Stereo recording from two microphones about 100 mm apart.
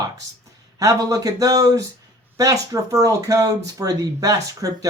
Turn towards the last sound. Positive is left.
turn(degrees=-35)  # may be behind; listen again after turning